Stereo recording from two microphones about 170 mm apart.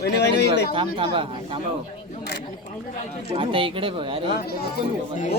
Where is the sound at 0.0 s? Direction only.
80° left.